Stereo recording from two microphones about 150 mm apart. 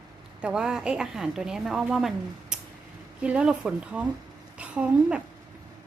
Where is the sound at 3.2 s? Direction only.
10° right (ahead or behind).